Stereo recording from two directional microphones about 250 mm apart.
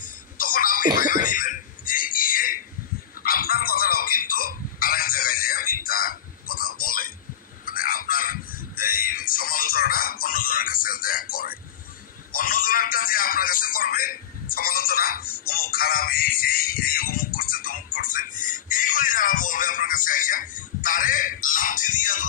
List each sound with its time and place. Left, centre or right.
0.0 s cough: left
3.2 s a sound: left
12.3 s music: left